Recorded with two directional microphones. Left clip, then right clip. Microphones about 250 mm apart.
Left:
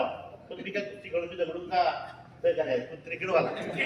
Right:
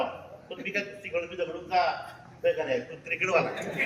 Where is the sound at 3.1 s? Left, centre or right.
Centre.